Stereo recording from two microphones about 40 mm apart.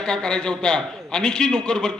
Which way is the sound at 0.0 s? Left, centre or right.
Centre.